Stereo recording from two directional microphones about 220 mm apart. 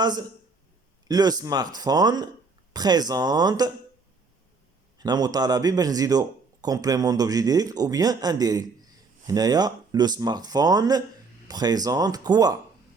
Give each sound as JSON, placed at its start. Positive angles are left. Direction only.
{"t": 0.0, "sound": "a man's voice", "side_deg": -20}
{"t": 4.9, "sound": "a man's voice", "side_deg": -20}